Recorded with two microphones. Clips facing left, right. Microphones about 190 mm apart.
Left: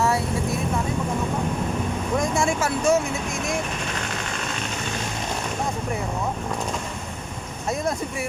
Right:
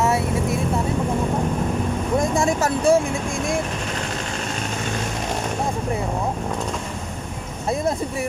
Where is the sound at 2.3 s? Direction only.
35° right (ahead or behind).